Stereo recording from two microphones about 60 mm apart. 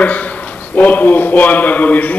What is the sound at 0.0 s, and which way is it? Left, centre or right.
A man's voice, left.